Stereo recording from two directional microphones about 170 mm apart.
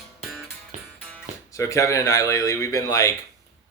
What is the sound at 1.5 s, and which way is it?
Speech, 15° left (ahead or behind).